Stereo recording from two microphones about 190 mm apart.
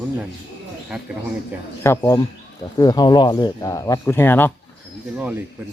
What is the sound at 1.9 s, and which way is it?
Speech, 20° left (ahead or behind).